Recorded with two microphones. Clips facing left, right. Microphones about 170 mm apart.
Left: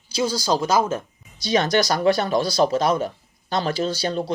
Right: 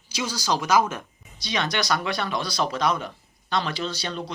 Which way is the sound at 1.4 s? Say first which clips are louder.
Left 7 dB; 45° left (ahead or behind).